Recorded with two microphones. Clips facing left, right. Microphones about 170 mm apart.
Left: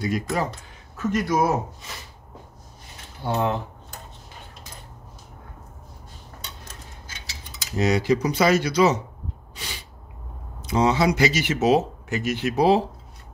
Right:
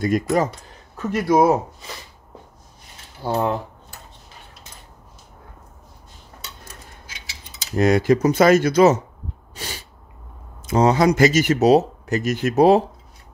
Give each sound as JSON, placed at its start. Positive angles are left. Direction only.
{"t": 0.0, "sound": "speech", "side_deg": -45}
{"t": 0.9, "sound": "speech", "side_deg": -30}
{"t": 3.3, "sound": "speech", "side_deg": -30}
{"t": 7.7, "sound": "speech", "side_deg": -50}
{"t": 9.6, "sound": "a sound", "side_deg": -45}
{"t": 10.6, "sound": "speech", "side_deg": -45}